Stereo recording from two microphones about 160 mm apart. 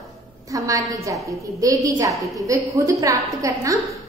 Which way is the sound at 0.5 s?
20° right (ahead or behind).